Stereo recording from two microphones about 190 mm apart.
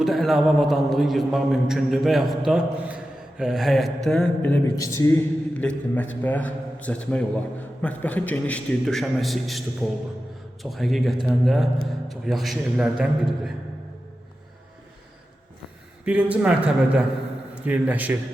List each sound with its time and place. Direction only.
0.0 s a man's voice: centre (ahead or behind)
16.0 s a man's voice: 5° right (ahead or behind)